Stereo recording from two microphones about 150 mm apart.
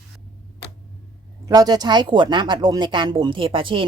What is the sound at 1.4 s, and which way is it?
Speech, 25° right (ahead or behind).